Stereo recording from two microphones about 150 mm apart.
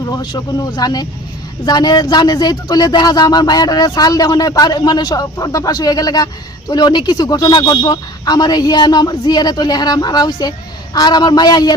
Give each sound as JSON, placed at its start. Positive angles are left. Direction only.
{"t": 0.2, "sound": "speech", "side_deg": 25}